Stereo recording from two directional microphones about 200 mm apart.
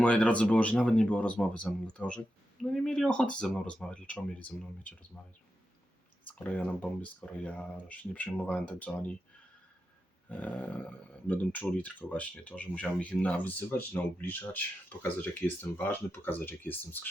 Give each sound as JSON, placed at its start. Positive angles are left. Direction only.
{"t": 0.0, "sound": "speech", "side_deg": 5}
{"t": 6.2, "sound": "speech", "side_deg": 5}
{"t": 10.2, "sound": "speech", "side_deg": 5}